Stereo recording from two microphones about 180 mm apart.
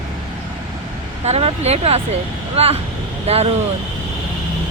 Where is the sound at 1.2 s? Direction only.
35° right (ahead or behind).